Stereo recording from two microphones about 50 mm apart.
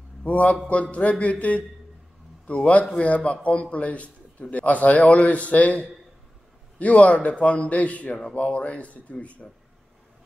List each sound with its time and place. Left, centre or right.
0.2 s a man's voice: left